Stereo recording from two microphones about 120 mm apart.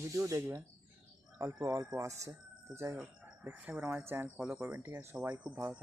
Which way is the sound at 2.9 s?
15° right (ahead or behind).